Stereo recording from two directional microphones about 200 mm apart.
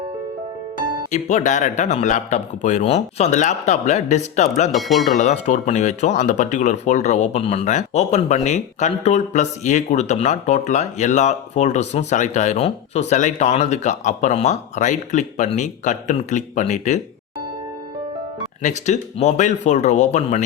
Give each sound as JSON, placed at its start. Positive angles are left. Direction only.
{"t": 1.1, "sound": "speech", "side_deg": 35}
{"t": 4.7, "sound": "speech", "side_deg": 0}
{"t": 5.1, "sound": "speech", "side_deg": 35}
{"t": 18.6, "sound": "speech", "side_deg": 35}